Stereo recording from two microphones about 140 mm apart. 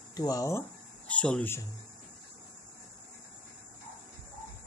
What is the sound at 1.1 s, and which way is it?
Speech, 10° left (ahead or behind).